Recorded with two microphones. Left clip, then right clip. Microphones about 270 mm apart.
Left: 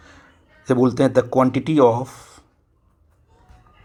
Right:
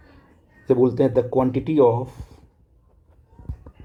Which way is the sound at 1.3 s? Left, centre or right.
Left.